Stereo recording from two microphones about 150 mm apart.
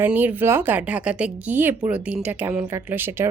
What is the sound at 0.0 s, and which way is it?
A woman's voice, 10° right (ahead or behind).